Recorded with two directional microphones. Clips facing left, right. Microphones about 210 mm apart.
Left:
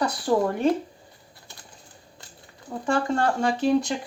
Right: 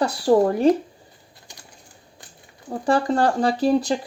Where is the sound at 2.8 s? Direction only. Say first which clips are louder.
Right 4 dB; 35° right (ahead or behind).